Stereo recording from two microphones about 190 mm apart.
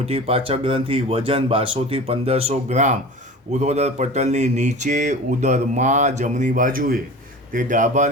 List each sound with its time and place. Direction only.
0.0 s speech: 30° right (ahead or behind)